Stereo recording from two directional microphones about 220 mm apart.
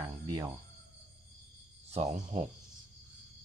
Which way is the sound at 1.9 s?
30° right (ahead or behind).